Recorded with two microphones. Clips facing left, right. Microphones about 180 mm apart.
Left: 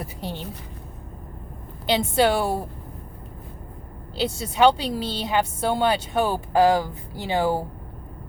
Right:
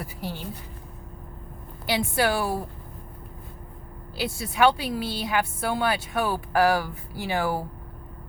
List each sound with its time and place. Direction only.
0.0 s a woman's voice: 20° left (ahead or behind)
1.9 s speech: 25° left (ahead or behind)
4.1 s speech: 25° left (ahead or behind)